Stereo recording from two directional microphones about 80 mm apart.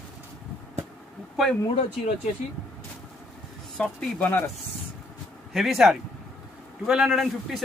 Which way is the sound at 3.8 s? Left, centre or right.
Centre.